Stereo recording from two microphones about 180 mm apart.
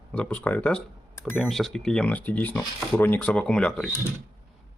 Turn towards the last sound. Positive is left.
turn(degrees=5)  # may be behind; listen again after turning